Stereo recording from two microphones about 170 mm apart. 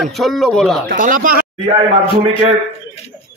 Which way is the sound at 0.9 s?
55° right (ahead or behind).